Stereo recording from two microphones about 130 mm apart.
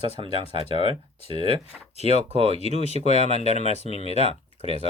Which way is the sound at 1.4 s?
55° left (ahead or behind).